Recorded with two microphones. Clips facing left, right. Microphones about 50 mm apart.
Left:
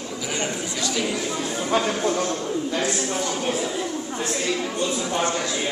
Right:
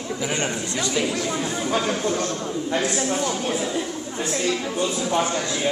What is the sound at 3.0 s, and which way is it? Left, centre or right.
Speech, centre.